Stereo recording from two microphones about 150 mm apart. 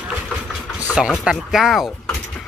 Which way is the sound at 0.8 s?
5° right (ahead or behind).